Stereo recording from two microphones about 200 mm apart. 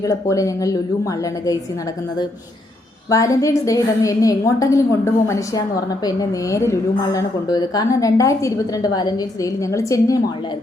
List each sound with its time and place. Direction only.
0.0 s a woman's voice: 15° left (ahead or behind)
3.1 s a woman's voice: 15° left (ahead or behind)